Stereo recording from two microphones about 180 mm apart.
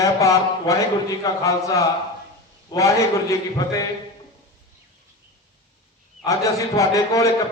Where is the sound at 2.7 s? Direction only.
15° left (ahead or behind).